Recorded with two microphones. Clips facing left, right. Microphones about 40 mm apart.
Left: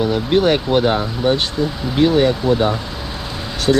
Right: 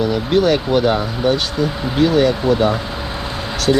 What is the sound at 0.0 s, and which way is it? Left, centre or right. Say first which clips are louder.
Speech: even; centre.